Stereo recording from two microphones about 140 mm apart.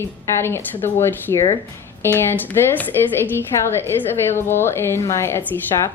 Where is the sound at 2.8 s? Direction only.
15° left (ahead or behind).